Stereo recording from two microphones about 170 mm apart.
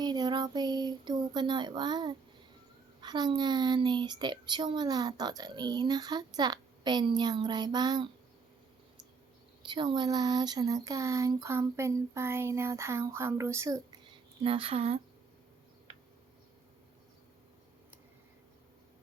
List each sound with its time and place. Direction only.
0.0 s a sound: 25° right (ahead or behind)
3.0 s speech: 25° right (ahead or behind)
9.6 s speech: 25° right (ahead or behind)
14.4 s speech: 35° right (ahead or behind)